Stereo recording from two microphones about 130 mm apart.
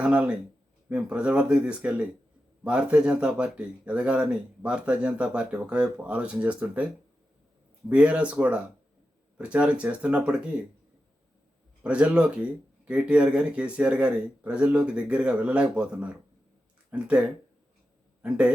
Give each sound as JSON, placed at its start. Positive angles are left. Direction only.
{"t": 0.0, "sound": "speech", "side_deg": -10}
{"t": 7.9, "sound": "speech", "side_deg": -10}
{"t": 11.8, "sound": "a man's voice", "side_deg": -10}